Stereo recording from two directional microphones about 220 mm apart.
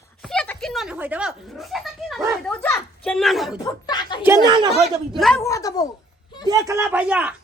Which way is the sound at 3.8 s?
20° left (ahead or behind).